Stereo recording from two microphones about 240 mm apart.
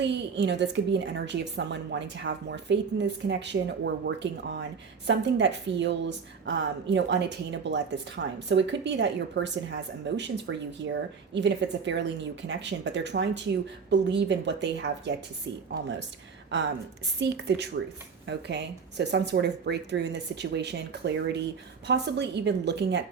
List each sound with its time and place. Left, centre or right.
0.0 s a woman's voice: right
17.2 s a woman's voice: right